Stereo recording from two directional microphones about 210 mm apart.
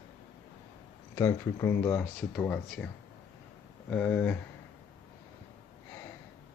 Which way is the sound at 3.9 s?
5° left (ahead or behind).